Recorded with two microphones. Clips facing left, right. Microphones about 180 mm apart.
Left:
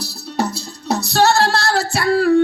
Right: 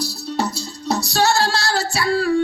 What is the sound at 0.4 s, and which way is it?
Music, 60° left (ahead or behind).